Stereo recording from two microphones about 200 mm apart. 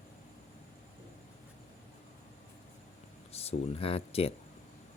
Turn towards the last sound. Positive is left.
turn(degrees=30)  # may be behind; listen again after turning